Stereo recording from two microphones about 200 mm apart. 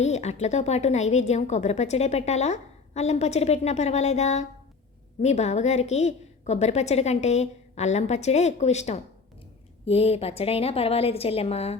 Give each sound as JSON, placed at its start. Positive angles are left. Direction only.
{"t": 0.0, "sound": "a woman's voice", "side_deg": 35}